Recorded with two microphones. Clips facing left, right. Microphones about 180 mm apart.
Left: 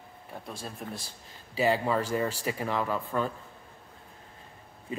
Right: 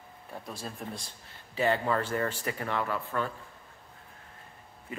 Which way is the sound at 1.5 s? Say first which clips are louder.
Left 1 dB; 10° left (ahead or behind).